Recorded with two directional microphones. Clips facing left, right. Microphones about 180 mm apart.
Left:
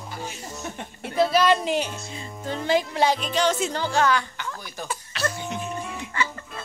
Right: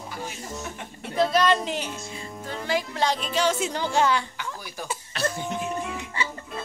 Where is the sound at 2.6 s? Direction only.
25° left (ahead or behind).